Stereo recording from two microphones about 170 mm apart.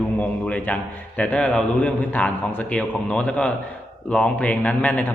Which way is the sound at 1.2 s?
5° left (ahead or behind).